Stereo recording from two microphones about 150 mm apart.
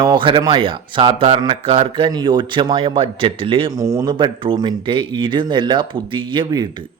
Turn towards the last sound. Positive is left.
turn(degrees=-30)  # may be behind; listen again after turning